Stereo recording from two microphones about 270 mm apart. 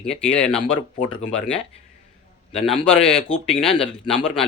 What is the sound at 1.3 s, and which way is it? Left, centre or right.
Speech, centre.